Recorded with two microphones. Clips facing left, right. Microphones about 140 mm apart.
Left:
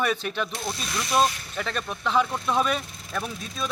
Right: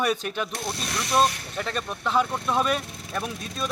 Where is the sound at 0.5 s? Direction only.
65° right (ahead or behind).